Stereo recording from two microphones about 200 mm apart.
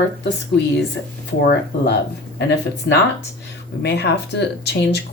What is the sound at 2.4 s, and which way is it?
Speech, 60° left (ahead or behind).